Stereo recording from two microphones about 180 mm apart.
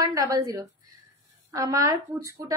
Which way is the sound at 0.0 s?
20° right (ahead or behind).